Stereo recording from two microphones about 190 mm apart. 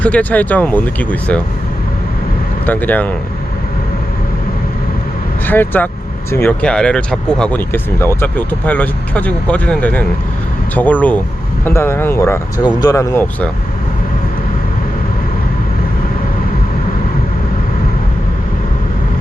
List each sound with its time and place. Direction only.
0.0 s speech: 5° left (ahead or behind)
2.6 s speech: 10° left (ahead or behind)
5.5 s speech: 10° left (ahead or behind)